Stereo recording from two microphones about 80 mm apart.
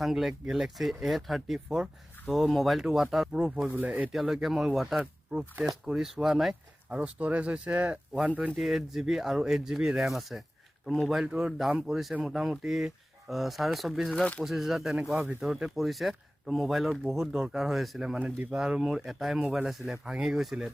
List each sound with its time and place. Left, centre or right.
0.0 s speech: centre
4.1 s speech: centre
8.5 s speech: centre